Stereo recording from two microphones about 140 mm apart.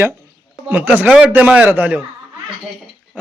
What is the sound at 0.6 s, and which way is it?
A man's voice, 10° right (ahead or behind).